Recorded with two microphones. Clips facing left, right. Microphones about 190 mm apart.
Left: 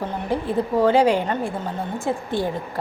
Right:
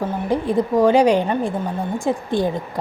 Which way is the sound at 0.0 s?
15° right (ahead or behind).